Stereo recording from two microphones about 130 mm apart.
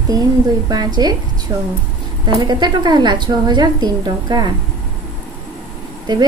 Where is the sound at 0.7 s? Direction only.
30° right (ahead or behind).